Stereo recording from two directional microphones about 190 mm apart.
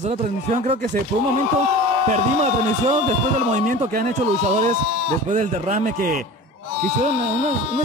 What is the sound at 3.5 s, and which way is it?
Speech, 40° right (ahead or behind).